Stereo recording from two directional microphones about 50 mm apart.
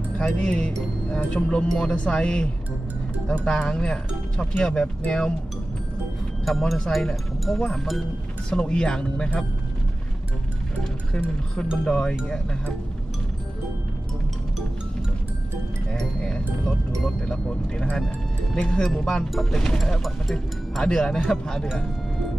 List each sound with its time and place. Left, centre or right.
0.2 s speech: centre
6.4 s speech: centre
8.5 s speech: centre
11.8 s speech: centre
16.0 s music: centre
17.9 s speech: centre